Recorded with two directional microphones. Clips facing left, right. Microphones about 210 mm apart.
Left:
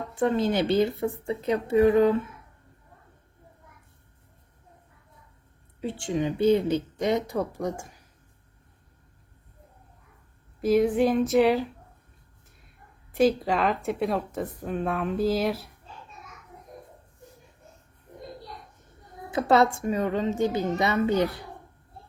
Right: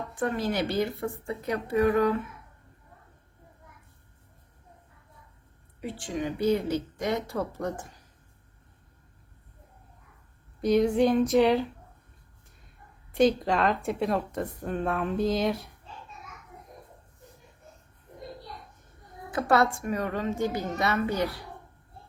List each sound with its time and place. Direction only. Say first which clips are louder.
0.1 s speech: left 5 dB; 25° left (ahead or behind)
5.8 s a woman's voice: left 4 dB; 25° left (ahead or behind)
10.6 s speech: left 1 dB; centre (ahead or behind)
13.1 s speech: left 1 dB; 5° left (ahead or behind)
19.3 s speech: left 3 dB; 20° left (ahead or behind)